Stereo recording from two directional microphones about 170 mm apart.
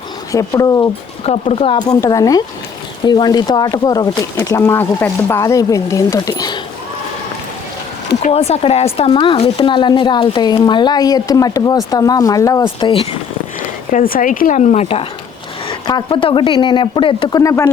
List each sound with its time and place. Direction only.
0.3 s speech: 20° left (ahead or behind)
1.2 s speech: 35° left (ahead or behind)
2.0 s speech: 20° left (ahead or behind)
8.2 s speech: 40° left (ahead or behind); by 12.9 s 20° left (ahead or behind)
12.9 s speech: 35° left (ahead or behind)
13.9 s speech: 55° left (ahead or behind); by 15.0 s 40° left (ahead or behind)
15.9 s speech: 25° left (ahead or behind)